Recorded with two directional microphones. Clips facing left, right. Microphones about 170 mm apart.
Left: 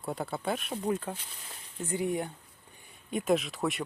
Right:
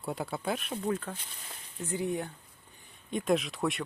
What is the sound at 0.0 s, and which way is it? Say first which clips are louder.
Speech: left 1 dB; centre (ahead or behind).